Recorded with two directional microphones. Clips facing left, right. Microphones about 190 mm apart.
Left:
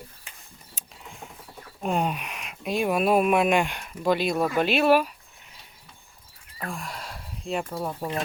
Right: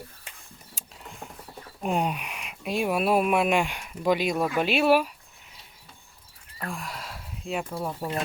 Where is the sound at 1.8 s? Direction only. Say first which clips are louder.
Left 1 dB; 10° right (ahead or behind).